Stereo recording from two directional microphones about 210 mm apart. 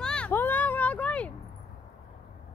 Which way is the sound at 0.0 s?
5° left (ahead or behind).